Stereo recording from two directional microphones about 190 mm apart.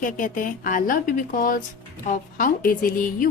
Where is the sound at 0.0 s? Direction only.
45° left (ahead or behind).